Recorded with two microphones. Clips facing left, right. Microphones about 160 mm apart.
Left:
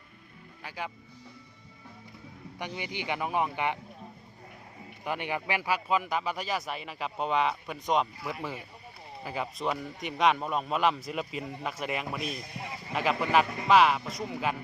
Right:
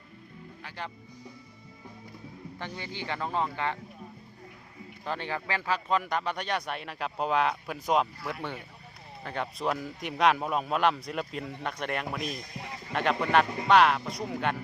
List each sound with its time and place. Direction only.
2.6 s speech: 15° left (ahead or behind)
5.0 s a man's voice: 15° left (ahead or behind)